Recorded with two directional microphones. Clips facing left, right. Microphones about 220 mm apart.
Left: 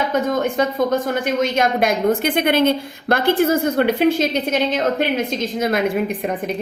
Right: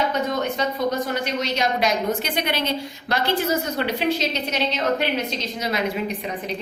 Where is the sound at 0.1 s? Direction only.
50° left (ahead or behind).